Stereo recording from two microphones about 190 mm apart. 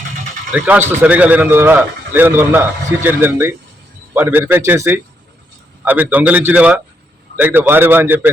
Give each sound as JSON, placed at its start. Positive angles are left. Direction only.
{"t": 0.5, "sound": "a man's voice", "side_deg": -10}